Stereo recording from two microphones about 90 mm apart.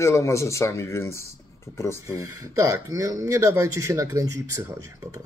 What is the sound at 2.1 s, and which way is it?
Speech, 35° right (ahead or behind).